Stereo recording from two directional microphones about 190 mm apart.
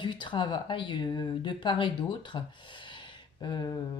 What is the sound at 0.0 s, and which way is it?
Speech, 25° left (ahead or behind).